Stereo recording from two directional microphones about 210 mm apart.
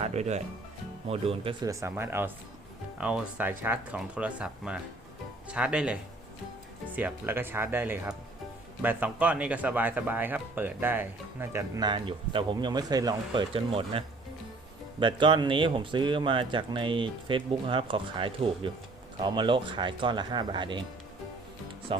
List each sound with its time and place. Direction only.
0.0 s speech: 30° right (ahead or behind)